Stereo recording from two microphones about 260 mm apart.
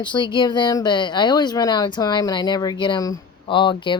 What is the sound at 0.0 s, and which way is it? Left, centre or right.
Speech, centre.